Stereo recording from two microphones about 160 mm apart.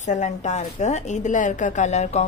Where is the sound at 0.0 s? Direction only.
50° left (ahead or behind).